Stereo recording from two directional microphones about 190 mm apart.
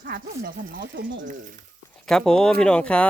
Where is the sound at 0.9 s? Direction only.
75° right (ahead or behind).